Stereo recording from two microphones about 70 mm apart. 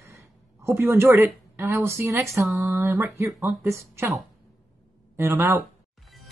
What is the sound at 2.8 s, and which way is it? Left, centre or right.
Speech, right.